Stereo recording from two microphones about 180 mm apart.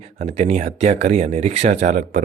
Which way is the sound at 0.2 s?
35° right (ahead or behind).